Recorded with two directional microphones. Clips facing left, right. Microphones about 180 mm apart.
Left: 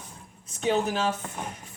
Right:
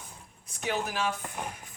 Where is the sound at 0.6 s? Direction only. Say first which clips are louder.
Left 6 dB; 30° left (ahead or behind).